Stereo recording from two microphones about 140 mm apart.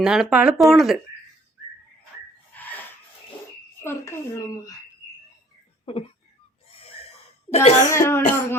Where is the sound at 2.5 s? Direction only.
10° left (ahead or behind).